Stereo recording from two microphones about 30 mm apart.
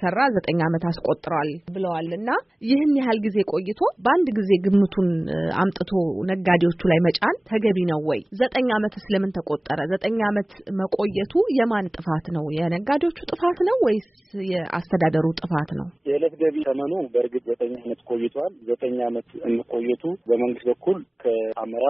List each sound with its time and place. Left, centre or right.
0.0 s speech: centre